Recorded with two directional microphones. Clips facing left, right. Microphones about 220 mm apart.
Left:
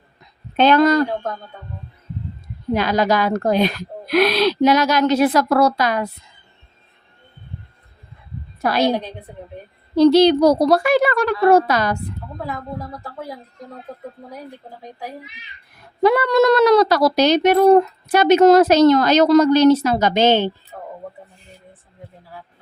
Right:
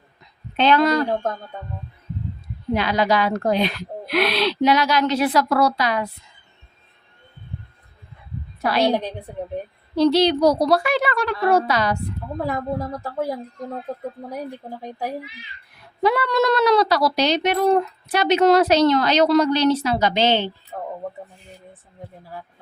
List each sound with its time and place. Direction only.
0.5 s speech: 45° left (ahead or behind)
2.7 s speech: 45° left (ahead or behind)
8.6 s speech: 45° left (ahead or behind)
10.0 s speech: 45° left (ahead or behind)
16.0 s speech: 45° left (ahead or behind)